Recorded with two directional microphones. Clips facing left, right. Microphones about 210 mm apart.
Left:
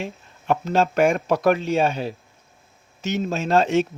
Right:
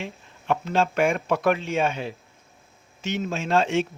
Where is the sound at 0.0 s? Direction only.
40° left (ahead or behind).